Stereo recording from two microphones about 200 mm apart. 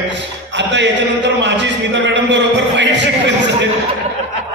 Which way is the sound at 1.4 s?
65° right (ahead or behind).